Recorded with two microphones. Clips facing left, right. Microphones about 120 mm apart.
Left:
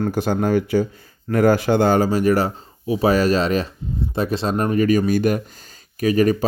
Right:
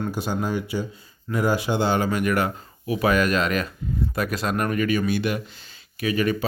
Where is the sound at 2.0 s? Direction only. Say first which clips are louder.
Left 5 dB; 30° left (ahead or behind).